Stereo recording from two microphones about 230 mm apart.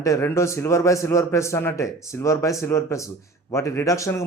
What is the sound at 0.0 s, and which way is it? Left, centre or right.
A man's voice, centre.